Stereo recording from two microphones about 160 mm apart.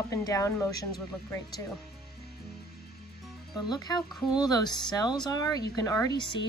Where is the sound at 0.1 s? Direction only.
20° left (ahead or behind).